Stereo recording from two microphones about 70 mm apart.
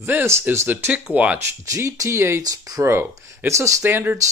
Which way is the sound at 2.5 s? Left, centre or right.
Right.